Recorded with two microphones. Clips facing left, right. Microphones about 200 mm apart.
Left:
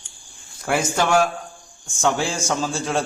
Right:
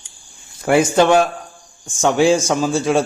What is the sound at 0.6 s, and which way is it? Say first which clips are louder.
A man's voice: right 8 dB; 20° right (ahead or behind).